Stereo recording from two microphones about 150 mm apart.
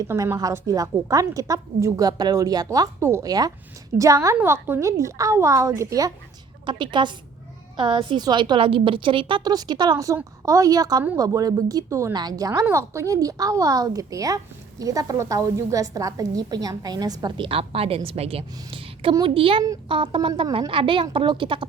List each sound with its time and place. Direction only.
0.1 s a woman's voice: 20° right (ahead or behind)
6.7 s a woman's voice: 30° right (ahead or behind)